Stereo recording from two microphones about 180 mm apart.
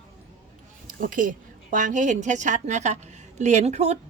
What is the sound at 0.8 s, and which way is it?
A woman's voice, 50° right (ahead or behind).